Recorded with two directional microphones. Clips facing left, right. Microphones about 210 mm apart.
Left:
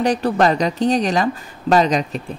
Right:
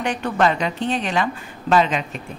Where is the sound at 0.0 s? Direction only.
35° left (ahead or behind).